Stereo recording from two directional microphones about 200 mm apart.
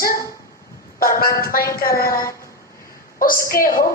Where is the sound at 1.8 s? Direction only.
50° left (ahead or behind).